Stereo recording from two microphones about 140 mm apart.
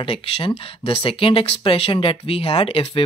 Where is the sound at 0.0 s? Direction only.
40° left (ahead or behind).